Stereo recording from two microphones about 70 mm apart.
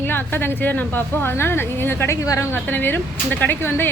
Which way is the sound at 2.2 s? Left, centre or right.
Left.